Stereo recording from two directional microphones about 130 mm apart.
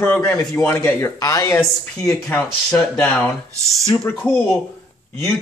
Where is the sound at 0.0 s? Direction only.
15° left (ahead or behind).